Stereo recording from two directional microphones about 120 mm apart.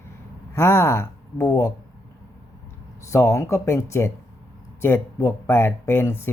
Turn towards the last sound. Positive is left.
turn(degrees=20)  # may be behind; listen again after turning